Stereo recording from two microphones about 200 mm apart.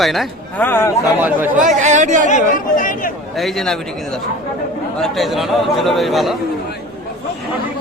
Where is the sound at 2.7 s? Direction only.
45° left (ahead or behind).